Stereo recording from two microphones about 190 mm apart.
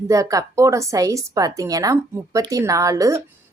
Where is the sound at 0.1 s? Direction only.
15° right (ahead or behind).